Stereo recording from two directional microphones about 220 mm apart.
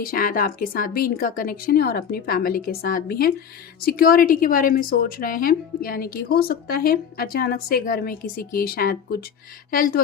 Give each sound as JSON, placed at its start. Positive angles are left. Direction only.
{"t": 0.0, "sound": "a woman's voice", "side_deg": 40}